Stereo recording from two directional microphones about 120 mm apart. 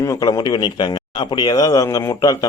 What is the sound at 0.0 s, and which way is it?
Speech, 30° left (ahead or behind).